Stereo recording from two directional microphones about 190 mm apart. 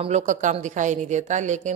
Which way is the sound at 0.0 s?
40° right (ahead or behind).